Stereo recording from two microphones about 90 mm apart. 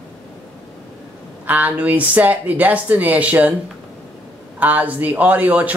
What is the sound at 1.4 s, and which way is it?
Speech, 15° right (ahead or behind).